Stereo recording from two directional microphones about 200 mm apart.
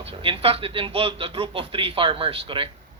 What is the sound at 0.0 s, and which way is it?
Speech, 25° right (ahead or behind).